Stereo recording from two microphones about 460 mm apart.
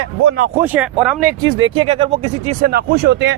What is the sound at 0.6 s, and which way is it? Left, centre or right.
Speech, centre.